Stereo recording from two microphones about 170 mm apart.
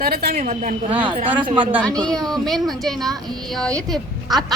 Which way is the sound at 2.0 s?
Centre (ahead or behind).